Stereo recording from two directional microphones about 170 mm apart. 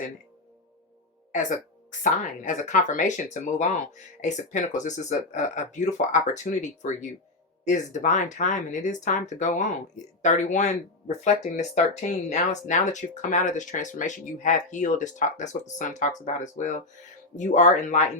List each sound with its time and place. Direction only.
1.3 s speech: 45° left (ahead or behind)